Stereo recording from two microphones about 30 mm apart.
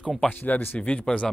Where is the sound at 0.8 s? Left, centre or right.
Left.